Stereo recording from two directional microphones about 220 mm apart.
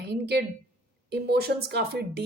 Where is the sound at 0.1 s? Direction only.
50° right (ahead or behind).